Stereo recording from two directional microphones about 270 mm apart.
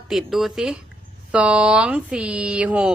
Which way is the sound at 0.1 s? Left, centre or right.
Centre.